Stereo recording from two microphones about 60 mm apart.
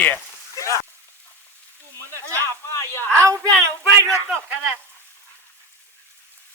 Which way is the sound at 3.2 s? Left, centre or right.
Right.